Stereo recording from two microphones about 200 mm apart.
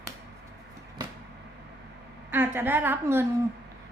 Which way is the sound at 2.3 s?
10° right (ahead or behind).